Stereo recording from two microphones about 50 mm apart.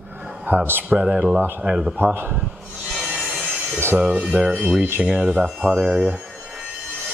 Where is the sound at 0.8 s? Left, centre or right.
Centre.